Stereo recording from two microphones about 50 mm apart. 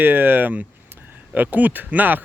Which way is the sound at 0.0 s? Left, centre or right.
Right.